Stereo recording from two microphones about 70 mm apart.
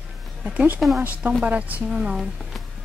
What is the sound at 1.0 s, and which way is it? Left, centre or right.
A woman's voice, right.